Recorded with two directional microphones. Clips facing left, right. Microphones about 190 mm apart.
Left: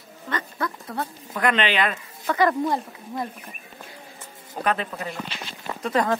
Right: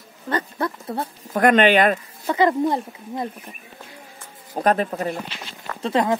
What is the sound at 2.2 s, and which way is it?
Speech, 20° right (ahead or behind).